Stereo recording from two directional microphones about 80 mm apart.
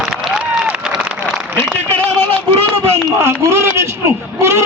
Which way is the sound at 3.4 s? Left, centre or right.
Right.